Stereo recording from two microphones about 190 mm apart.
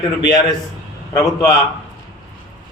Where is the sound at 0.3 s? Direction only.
20° left (ahead or behind).